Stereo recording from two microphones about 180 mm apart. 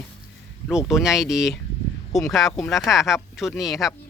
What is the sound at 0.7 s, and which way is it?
Speech, 5° right (ahead or behind).